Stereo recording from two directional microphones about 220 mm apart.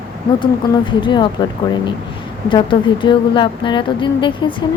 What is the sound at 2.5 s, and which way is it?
Speech, 20° left (ahead or behind).